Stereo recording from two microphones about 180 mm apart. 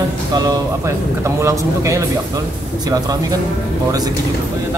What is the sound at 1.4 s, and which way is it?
Speech, 15° right (ahead or behind).